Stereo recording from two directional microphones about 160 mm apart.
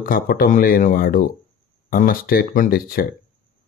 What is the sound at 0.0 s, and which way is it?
Speech, 65° left (ahead or behind).